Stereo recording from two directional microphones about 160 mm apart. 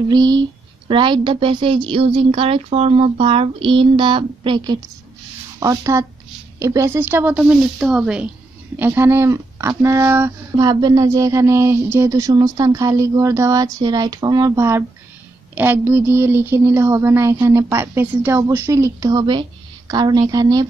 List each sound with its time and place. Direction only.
0.1 s a woman's voice: 25° right (ahead or behind)
10.7 s speech: 25° right (ahead or behind)